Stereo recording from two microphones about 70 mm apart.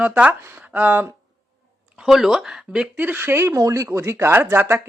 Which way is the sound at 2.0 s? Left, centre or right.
Centre.